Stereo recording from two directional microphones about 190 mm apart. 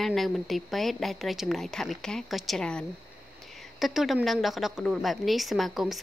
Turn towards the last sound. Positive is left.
turn(degrees=0)  # may be behind; listen again after turning